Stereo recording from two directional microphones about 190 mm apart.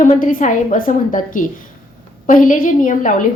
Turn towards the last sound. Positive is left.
turn(degrees=45)  # may be behind; listen again after turning